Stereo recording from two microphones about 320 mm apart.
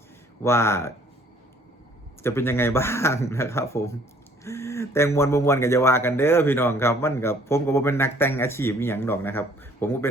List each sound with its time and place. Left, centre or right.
0.4 s speech: centre
2.2 s speech: centre